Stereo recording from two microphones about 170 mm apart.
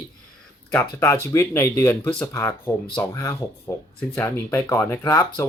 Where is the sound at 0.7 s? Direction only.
15° left (ahead or behind).